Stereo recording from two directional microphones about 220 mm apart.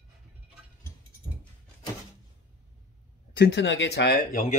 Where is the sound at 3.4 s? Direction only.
55° left (ahead or behind); by 4.6 s 35° left (ahead or behind).